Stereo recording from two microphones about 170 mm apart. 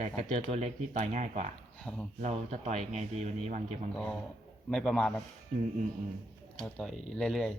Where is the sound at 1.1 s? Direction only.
45° right (ahead or behind).